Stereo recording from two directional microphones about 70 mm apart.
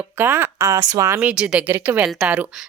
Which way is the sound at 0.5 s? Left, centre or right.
Right.